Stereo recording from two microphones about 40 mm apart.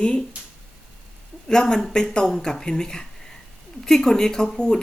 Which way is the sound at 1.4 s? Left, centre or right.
Centre.